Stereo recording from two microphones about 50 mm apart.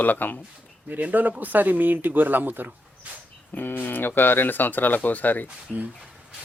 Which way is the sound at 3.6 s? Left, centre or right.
Left.